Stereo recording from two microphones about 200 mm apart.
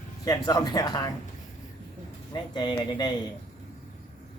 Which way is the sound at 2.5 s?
20° left (ahead or behind).